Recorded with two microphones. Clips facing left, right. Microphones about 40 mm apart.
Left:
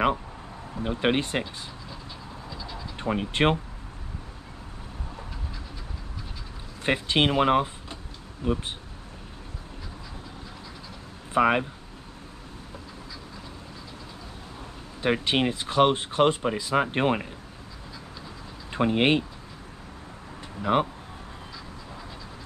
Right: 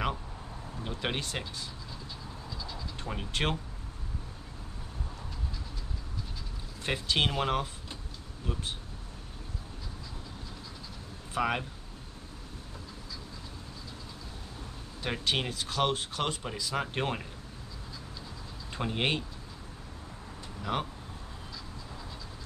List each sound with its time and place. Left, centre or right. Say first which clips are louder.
0.8 s speech: left 10 dB; left
2.5 s a sound: left 3 dB; centre
3.0 s speech: left 10 dB; left
6.8 s speech: left 6 dB; left
11.3 s speech: left 9 dB; left
15.0 s speech: left 7 dB; left
18.7 s speech: left 9 dB; left
20.7 s speech: left 10 dB; left